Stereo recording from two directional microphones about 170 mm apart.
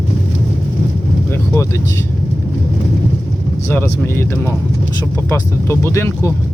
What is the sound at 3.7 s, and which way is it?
Speech, 10° left (ahead or behind).